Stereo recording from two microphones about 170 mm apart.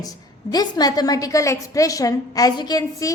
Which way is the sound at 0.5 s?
20° left (ahead or behind).